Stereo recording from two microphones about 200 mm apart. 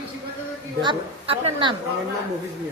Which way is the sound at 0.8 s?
25° right (ahead or behind).